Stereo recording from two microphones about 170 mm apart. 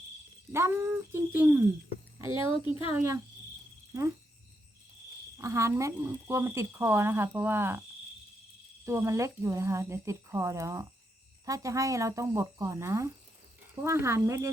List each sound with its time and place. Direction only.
0.5 s speech: 15° right (ahead or behind)
5.4 s speech: 15° right (ahead or behind)
8.8 s speech: 15° right (ahead or behind)